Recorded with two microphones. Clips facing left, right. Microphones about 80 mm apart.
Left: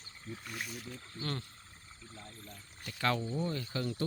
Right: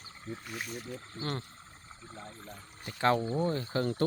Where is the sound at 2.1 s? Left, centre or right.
Right.